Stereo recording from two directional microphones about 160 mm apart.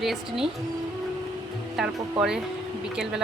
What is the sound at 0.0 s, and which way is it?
Speech, centre (ahead or behind).